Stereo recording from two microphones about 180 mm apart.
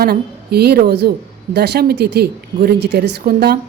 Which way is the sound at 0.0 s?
60° right (ahead or behind).